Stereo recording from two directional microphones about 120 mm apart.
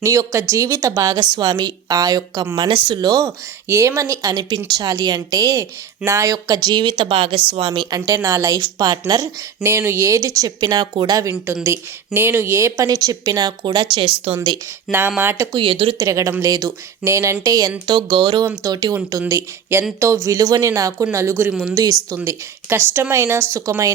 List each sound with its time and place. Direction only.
0.0 s speech: 25° right (ahead or behind)
2.6 s speech: 45° right (ahead or behind)
9.6 s a woman's voice: 20° right (ahead or behind)
11.6 s a woman's voice: 20° right (ahead or behind); by 14.3 s 45° right (ahead or behind)
14.9 s speech: centre (ahead or behind)
15.2 s a woman's voice: 20° right (ahead or behind)
15.5 s speech: 50° right (ahead or behind)
16.0 s a woman's voice: 25° right (ahead or behind)
18.4 s a woman's voice: 20° right (ahead or behind)
18.7 s a woman's voice: 30° right (ahead or behind)
21.5 s speech: 5° right (ahead or behind)
22.2 s a woman's voice: 20° right (ahead or behind)